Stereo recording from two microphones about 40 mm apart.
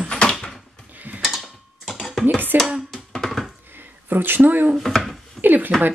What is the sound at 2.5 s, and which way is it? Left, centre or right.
Speech, right.